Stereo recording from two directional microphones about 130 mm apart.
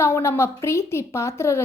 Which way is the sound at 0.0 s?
20° left (ahead or behind).